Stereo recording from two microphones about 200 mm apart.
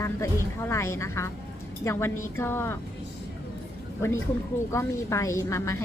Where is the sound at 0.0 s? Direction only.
15° left (ahead or behind).